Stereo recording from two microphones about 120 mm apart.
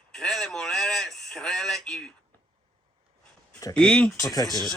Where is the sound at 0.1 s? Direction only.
5° left (ahead or behind).